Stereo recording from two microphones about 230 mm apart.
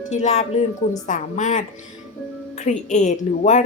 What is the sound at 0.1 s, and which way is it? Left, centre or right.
A woman's voice, left.